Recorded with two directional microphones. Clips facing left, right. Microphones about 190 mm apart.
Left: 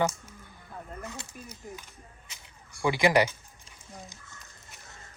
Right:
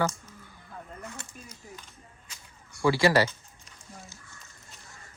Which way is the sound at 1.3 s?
10° left (ahead or behind).